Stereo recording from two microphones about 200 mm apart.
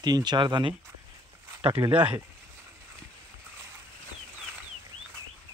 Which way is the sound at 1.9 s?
5° right (ahead or behind).